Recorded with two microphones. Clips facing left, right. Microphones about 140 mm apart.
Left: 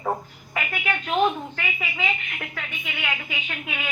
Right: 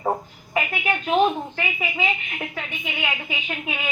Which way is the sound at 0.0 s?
25° right (ahead or behind).